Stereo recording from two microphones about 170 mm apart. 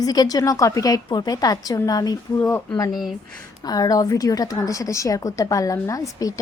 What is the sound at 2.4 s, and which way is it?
Speech, 10° left (ahead or behind).